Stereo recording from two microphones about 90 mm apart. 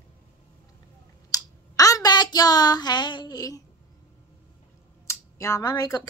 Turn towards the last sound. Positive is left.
turn(degrees=40)  # may be behind; listen again after turning